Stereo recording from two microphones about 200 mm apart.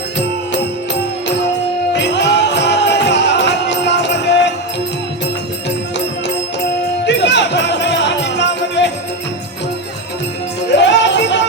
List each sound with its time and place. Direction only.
2.1 s music: 60° left (ahead or behind)
7.0 s music: 60° left (ahead or behind)
10.8 s music: 60° left (ahead or behind)